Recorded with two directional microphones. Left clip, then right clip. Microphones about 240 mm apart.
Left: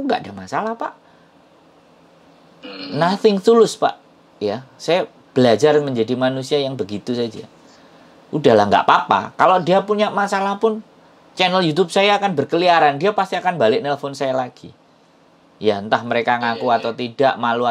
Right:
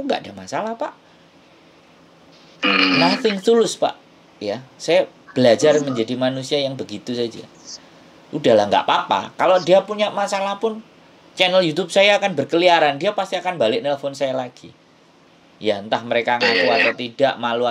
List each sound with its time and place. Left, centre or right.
0.0 s speech: centre
3.0 s speech: centre